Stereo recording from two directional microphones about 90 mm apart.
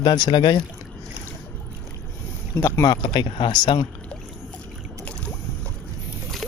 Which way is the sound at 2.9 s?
60° left (ahead or behind).